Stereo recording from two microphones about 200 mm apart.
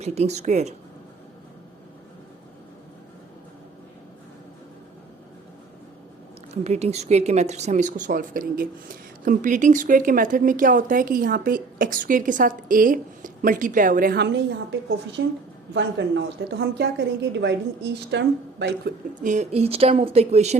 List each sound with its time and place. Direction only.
0.0 s speech: 35° right (ahead or behind)
6.5 s a woman's voice: 35° right (ahead or behind); by 18.9 s 55° right (ahead or behind)
19.2 s speech: 35° right (ahead or behind)